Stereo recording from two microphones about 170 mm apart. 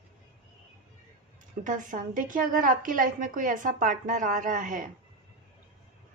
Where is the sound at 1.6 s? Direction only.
50° right (ahead or behind).